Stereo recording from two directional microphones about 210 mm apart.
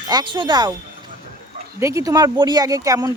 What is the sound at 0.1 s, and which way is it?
Speech, 20° right (ahead or behind).